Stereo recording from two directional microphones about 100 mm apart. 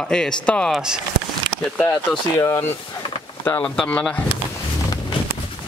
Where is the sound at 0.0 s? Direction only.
10° left (ahead or behind).